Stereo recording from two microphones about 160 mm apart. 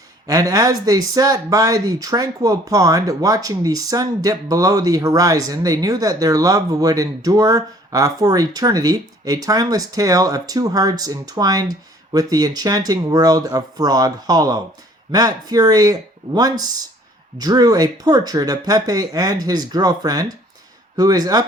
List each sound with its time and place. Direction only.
0.3 s speech: 20° right (ahead or behind)